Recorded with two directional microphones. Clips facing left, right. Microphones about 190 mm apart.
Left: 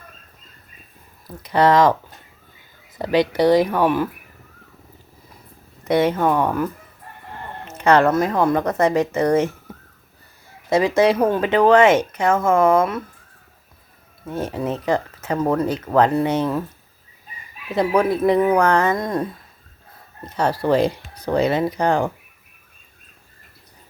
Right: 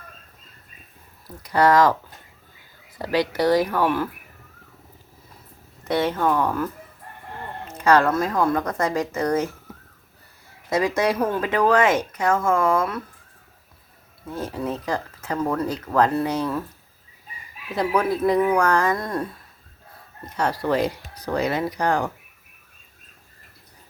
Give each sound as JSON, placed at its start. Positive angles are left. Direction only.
{"t": 1.4, "sound": "speech", "side_deg": 20}
{"t": 3.0, "sound": "speech", "side_deg": 20}
{"t": 5.8, "sound": "speech", "side_deg": 20}
{"t": 7.9, "sound": "speech", "side_deg": 25}
{"t": 10.7, "sound": "speech", "side_deg": 25}
{"t": 14.3, "sound": "speech", "side_deg": 25}
{"t": 17.7, "sound": "speech", "side_deg": 20}
{"t": 20.3, "sound": "speech", "side_deg": 30}